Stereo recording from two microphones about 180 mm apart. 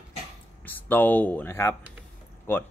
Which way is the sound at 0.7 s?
10° left (ahead or behind).